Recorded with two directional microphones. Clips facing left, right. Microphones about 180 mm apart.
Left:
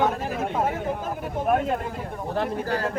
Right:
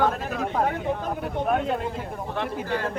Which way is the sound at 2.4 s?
40° left (ahead or behind).